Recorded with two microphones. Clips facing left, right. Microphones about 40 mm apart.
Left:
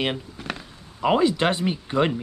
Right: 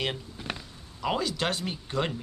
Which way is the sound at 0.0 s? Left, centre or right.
Left.